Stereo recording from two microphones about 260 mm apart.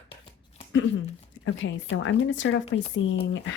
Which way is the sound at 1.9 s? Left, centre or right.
Left.